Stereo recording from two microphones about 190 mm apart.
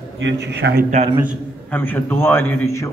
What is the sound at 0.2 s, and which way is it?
Speech, 70° right (ahead or behind).